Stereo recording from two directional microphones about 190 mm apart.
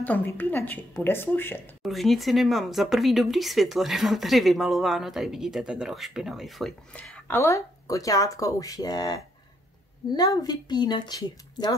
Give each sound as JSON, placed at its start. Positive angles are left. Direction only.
{"t": 0.0, "sound": "a woman's voice", "side_deg": 10}
{"t": 1.8, "sound": "a woman's voice", "side_deg": 0}